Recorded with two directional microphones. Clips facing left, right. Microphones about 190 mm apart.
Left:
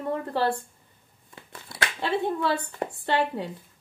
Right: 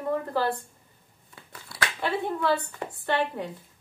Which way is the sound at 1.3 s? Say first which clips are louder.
Left 1 dB; 25° left (ahead or behind).